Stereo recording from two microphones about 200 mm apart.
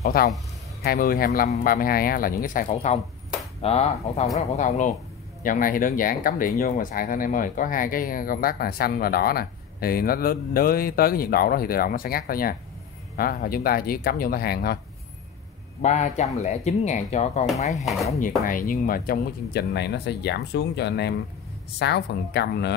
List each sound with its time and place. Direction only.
0.2 s speech: 50° left (ahead or behind)
15.8 s speech: 35° left (ahead or behind)
17.7 s speech: centre (ahead or behind)
18.2 s speech: 45° left (ahead or behind)